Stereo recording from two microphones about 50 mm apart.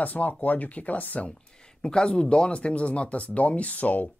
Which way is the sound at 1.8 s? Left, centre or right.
Centre.